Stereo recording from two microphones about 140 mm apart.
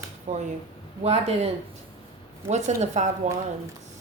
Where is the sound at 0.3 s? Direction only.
55° right (ahead or behind).